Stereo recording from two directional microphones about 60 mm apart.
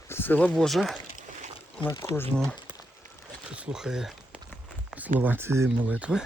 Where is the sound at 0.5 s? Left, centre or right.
Centre.